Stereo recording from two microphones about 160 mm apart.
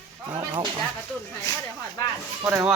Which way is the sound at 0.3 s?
30° right (ahead or behind).